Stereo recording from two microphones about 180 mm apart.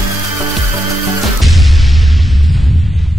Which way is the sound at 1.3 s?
Centre (ahead or behind).